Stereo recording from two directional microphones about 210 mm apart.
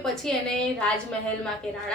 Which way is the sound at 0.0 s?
Centre (ahead or behind).